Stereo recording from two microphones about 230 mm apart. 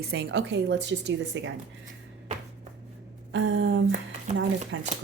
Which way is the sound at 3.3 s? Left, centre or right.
Right.